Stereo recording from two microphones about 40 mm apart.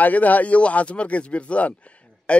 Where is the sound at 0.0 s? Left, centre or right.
Left.